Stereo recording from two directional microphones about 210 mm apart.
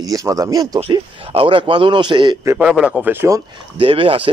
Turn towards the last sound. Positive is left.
turn(degrees=-25)  # may be behind; listen again after turning